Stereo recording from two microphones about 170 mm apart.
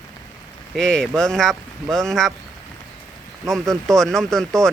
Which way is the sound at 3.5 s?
Centre (ahead or behind).